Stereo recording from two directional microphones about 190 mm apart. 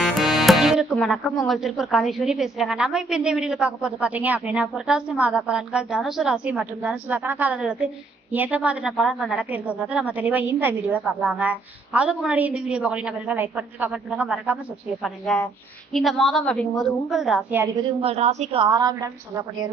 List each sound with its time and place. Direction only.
0.0 s music: centre (ahead or behind)
1.5 s a woman's voice: centre (ahead or behind)
17.7 s a woman's voice: 30° right (ahead or behind)